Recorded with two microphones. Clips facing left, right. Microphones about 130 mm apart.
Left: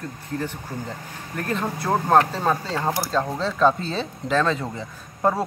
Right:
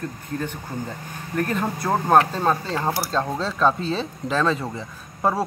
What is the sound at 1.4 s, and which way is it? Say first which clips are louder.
A man's voice: left 2 dB; 5° right (ahead or behind).